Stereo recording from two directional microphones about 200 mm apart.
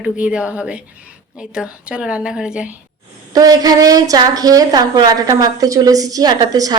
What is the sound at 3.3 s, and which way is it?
A woman's voice, 20° right (ahead or behind).